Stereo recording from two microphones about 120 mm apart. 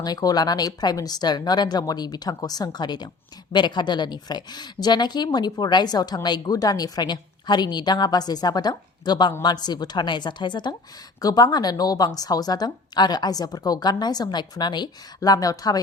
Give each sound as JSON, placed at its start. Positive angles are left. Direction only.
{"t": 0.0, "sound": "a woman's voice", "side_deg": 35}